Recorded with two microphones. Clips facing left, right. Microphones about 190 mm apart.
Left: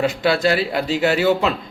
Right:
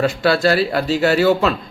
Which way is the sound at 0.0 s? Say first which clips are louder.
Right 2 dB; 15° left (ahead or behind).